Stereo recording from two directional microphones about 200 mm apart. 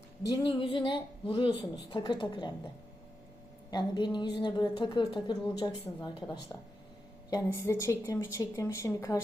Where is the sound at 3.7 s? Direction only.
20° left (ahead or behind).